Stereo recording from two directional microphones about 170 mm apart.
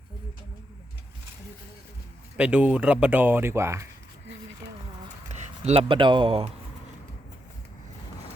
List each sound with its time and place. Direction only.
2.4 s speech: 10° right (ahead or behind)
5.6 s speech: 30° right (ahead or behind)